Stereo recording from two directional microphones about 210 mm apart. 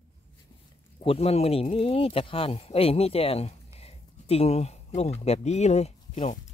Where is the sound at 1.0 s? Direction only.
30° left (ahead or behind).